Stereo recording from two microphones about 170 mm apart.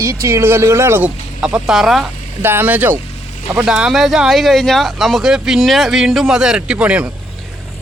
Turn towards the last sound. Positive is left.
turn(degrees=-5)  # may be behind; listen again after turning